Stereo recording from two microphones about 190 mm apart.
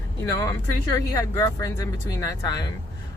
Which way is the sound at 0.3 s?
15° left (ahead or behind).